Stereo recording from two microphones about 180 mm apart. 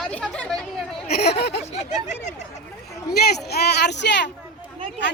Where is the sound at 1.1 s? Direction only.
60° left (ahead or behind).